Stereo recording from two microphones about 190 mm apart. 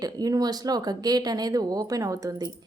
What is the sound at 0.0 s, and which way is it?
Speech, 20° right (ahead or behind).